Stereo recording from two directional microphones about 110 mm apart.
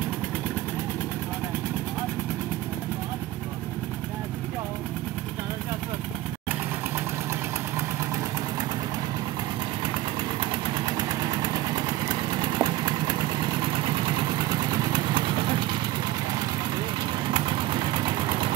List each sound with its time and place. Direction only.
10.5 s vehicle: 40° right (ahead or behind)
17.3 s vehicle: 45° right (ahead or behind)